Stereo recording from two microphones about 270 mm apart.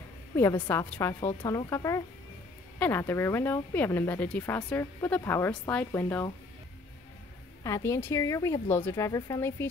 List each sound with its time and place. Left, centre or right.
0.4 s speech: centre
7.6 s speech: centre